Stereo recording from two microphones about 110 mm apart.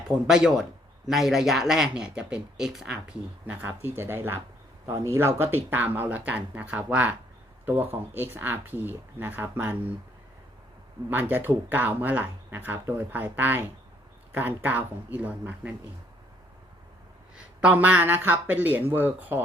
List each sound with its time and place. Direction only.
0.3 s speech: 5° right (ahead or behind)
3.5 s speech: 20° right (ahead or behind)
11.1 s speech: 20° right (ahead or behind)
17.3 s speech: 10° right (ahead or behind)